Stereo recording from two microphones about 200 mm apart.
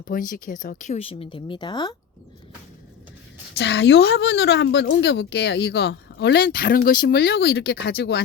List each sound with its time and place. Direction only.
0.0 s speech: 45° left (ahead or behind); by 2.0 s 20° left (ahead or behind)
3.6 s a woman's voice: 60° left (ahead or behind)